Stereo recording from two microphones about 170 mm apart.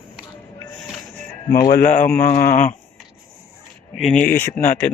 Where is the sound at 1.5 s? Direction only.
20° left (ahead or behind).